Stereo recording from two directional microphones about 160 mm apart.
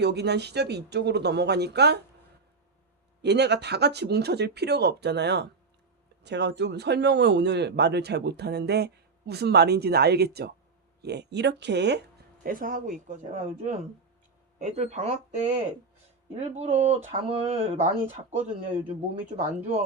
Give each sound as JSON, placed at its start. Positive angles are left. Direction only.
{"t": 0.0, "sound": "a man's voice", "side_deg": -90}
{"t": 3.2, "sound": "a man's voice", "side_deg": -90}
{"t": 19.4, "sound": "speech", "side_deg": -45}